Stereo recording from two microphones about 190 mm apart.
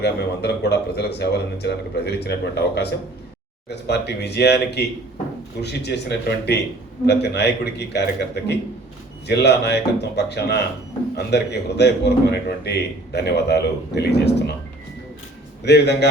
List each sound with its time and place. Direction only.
0.0 s a man's voice: 60° left (ahead or behind)
15.6 s a man's voice: 60° left (ahead or behind)